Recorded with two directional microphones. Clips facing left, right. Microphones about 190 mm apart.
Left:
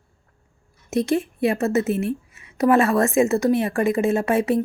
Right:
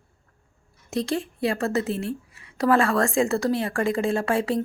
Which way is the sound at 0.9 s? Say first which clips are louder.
Left 5 dB; 20° left (ahead or behind).